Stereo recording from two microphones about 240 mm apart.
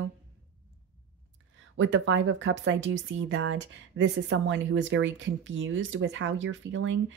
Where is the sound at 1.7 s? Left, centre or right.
Right.